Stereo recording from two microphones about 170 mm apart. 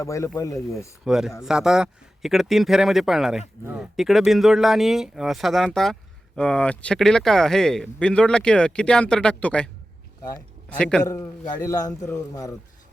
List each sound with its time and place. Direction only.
0.0 s speech: 15° left (ahead or behind)
1.0 s speech: 5° right (ahead or behind)
10.7 s speech: 5° left (ahead or behind)
11.0 s a man's voice: 20° left (ahead or behind)